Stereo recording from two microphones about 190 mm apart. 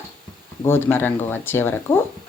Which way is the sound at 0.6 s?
10° left (ahead or behind).